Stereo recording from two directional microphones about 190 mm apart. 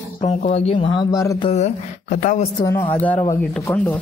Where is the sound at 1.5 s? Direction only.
35° left (ahead or behind).